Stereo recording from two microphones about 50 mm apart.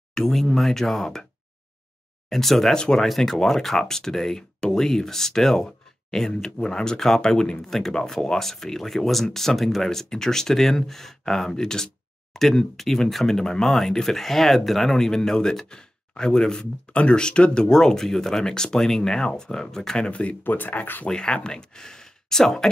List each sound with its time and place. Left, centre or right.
0.1 s speech: centre
2.2 s speech: centre
20.1 s speech: left
20.4 s speech: left
21.1 s speech: centre